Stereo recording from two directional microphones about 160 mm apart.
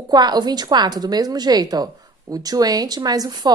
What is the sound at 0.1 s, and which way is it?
A woman's voice, 25° right (ahead or behind).